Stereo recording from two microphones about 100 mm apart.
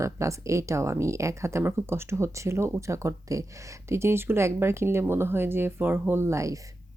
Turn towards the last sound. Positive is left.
turn(degrees=-30)  # may be behind; listen again after turning